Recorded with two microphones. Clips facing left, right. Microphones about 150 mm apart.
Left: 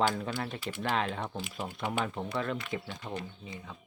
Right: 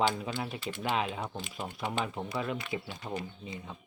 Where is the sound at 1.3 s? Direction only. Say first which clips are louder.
Left 1 dB; 5° left (ahead or behind); by 3.2 s 10° right (ahead or behind).